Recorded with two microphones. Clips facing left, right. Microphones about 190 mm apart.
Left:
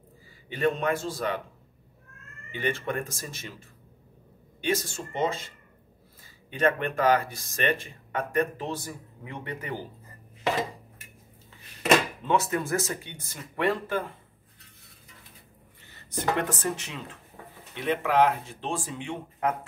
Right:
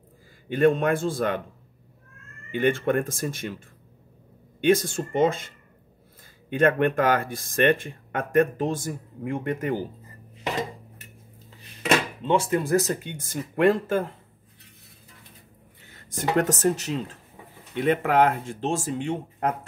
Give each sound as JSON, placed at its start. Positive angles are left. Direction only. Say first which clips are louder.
{"t": 0.5, "sound": "speech", "louder": "right 6 dB", "side_deg": -50}
{"t": 2.5, "sound": "speech", "louder": "right 8 dB", "side_deg": -50}
{"t": 6.5, "sound": "speech", "louder": "right 5 dB", "side_deg": -50}
{"t": 12.2, "sound": "speech", "louder": "right 3 dB", "side_deg": -30}
{"t": 16.3, "sound": "speech", "louder": "right 7 dB", "side_deg": -45}
{"t": 17.7, "sound": "speech", "louder": "right 3 dB", "side_deg": -50}